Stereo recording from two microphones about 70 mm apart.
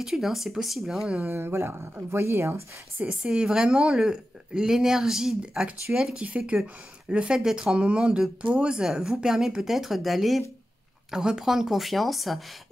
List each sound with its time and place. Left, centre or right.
0.0 s speech: centre
1.0 s speech: centre
1.3 s speech: right
3.1 s speech: centre